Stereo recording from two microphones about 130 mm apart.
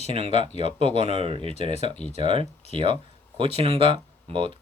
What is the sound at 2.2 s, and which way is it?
Speech, 40° right (ahead or behind).